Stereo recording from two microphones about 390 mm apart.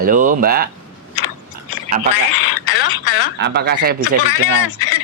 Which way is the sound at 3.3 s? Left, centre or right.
Right.